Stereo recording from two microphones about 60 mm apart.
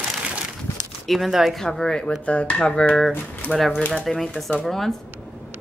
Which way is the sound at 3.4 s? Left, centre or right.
Left.